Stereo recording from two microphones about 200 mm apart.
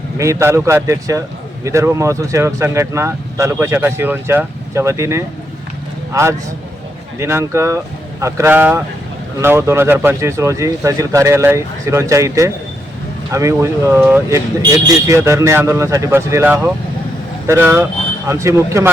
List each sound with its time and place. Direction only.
0.2 s speech: 15° right (ahead or behind)